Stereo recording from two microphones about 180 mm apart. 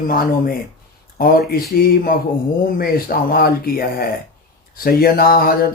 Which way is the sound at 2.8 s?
55° left (ahead or behind).